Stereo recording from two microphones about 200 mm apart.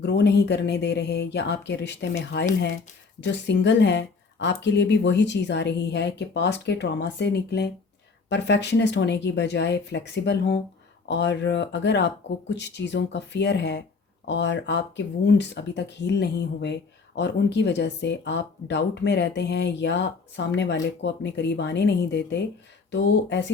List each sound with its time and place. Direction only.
0.0 s speech: 60° left (ahead or behind)